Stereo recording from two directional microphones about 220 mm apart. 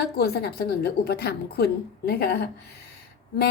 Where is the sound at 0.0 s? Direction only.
45° left (ahead or behind).